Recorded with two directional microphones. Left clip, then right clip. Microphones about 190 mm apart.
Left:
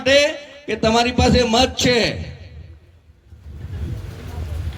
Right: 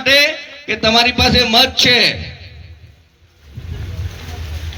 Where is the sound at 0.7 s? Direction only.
50° left (ahead or behind).